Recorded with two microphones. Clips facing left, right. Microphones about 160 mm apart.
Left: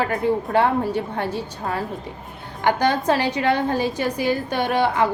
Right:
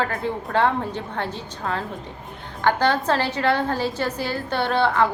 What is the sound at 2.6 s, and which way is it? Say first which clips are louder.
A woman's voice: left 1 dB; 15° left (ahead or behind).